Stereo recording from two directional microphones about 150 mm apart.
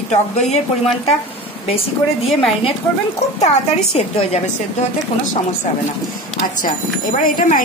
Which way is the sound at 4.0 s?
45° left (ahead or behind).